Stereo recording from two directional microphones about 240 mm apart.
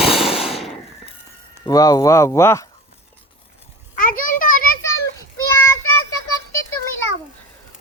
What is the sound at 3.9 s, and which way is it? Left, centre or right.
Children playing, left.